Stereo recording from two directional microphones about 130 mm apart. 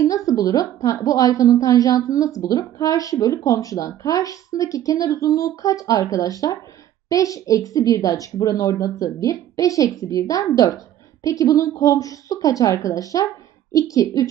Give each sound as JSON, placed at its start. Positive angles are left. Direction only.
{"t": 0.0, "sound": "a woman's voice", "side_deg": 25}